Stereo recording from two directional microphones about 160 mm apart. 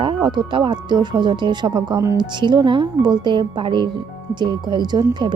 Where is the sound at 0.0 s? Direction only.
30° right (ahead or behind).